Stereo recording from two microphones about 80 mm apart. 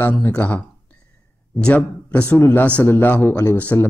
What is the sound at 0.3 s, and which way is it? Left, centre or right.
Speech, centre.